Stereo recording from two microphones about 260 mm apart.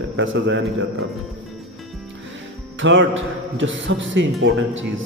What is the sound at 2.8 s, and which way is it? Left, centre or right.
Speech, right.